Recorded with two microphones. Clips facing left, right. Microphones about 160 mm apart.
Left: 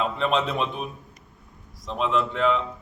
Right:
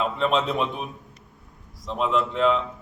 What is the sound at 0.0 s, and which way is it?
A man's voice, centre (ahead or behind).